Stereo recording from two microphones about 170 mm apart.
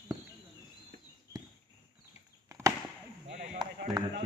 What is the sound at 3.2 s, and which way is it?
Basketball bounce, 40° right (ahead or behind).